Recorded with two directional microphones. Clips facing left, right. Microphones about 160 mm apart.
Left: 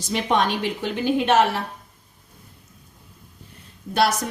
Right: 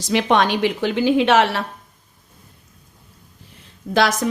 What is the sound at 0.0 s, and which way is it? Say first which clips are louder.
A woman's voice: right 4 dB; 85° right.